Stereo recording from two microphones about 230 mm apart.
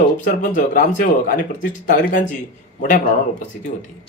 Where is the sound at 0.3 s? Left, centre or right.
Left.